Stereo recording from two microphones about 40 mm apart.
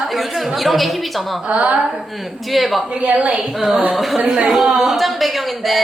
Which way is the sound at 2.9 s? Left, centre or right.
Right.